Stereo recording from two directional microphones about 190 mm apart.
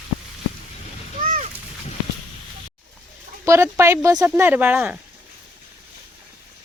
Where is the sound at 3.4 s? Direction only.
15° right (ahead or behind).